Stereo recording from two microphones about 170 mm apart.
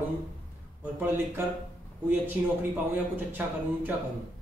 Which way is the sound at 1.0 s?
10° right (ahead or behind).